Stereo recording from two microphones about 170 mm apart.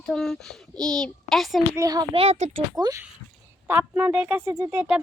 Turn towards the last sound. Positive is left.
turn(degrees=-20)  # may be behind; listen again after turning